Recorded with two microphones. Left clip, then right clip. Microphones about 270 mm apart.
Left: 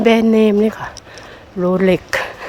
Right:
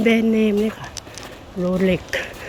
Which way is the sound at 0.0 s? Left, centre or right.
Centre.